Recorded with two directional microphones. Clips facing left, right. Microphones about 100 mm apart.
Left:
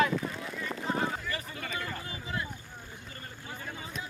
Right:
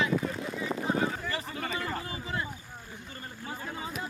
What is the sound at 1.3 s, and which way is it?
Vehicle, 35° right (ahead or behind).